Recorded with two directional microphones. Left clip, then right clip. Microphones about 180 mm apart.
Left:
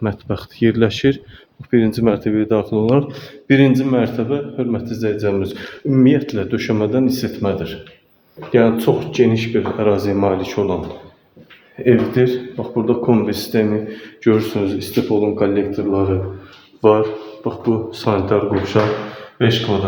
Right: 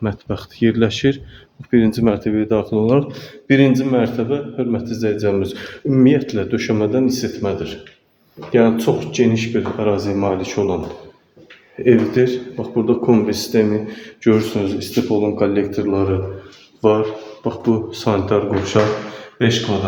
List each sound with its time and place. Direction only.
0.0 s speech: 5° left (ahead or behind)
1.7 s speech: 5° right (ahead or behind)
11.9 s speech: centre (ahead or behind)
16.8 s speech: centre (ahead or behind)
17.4 s speech: 15° right (ahead or behind)